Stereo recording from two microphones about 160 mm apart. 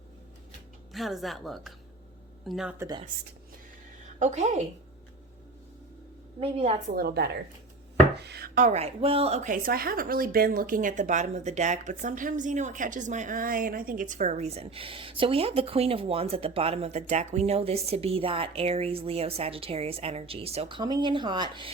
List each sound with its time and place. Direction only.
0.9 s a woman's voice: centre (ahead or behind)
2.7 s speech: 20° right (ahead or behind)
4.2 s a woman's voice: 45° right (ahead or behind)
6.4 s a woman's voice: 35° right (ahead or behind)
6.8 s a woman's voice: 70° right (ahead or behind); by 21.7 s 30° right (ahead or behind)